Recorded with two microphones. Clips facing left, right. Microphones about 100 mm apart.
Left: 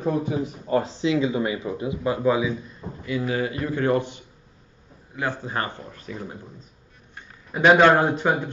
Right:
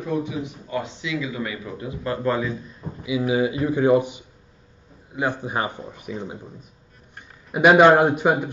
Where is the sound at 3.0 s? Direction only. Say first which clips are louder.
Right 4 dB; 10° right (ahead or behind).